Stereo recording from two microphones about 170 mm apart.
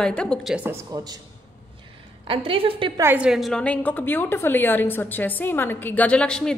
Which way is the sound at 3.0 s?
10° right (ahead or behind).